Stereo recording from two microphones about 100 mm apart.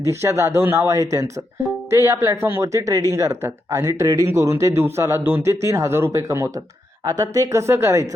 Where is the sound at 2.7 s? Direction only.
35° right (ahead or behind).